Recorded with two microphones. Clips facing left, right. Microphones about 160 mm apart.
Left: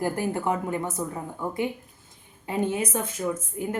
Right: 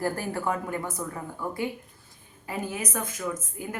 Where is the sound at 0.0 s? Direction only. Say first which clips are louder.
Left 2 dB; 20° left (ahead or behind).